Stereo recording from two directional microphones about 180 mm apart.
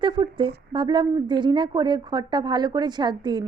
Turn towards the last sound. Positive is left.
turn(degrees=-25)  # may be behind; listen again after turning